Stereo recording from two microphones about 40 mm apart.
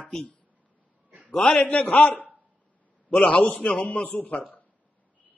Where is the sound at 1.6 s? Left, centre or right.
Left.